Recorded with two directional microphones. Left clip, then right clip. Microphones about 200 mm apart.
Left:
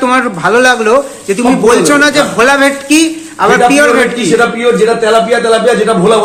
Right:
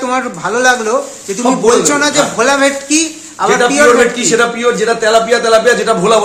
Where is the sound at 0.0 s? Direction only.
10° left (ahead or behind).